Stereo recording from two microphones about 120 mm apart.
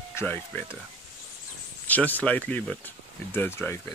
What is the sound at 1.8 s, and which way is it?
Speech, 15° left (ahead or behind).